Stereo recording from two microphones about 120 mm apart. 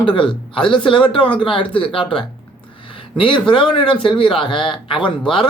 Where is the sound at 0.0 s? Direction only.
45° left (ahead or behind).